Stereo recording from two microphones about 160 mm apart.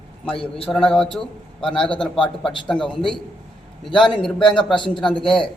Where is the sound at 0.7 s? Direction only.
10° left (ahead or behind).